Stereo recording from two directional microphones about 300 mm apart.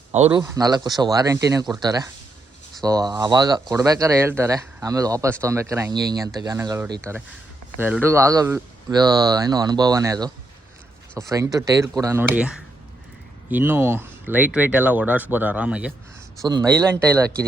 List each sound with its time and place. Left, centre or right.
0.1 s speech: centre
16.6 s speech: centre